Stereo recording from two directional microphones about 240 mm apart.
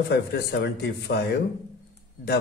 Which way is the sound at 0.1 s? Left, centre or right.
Left.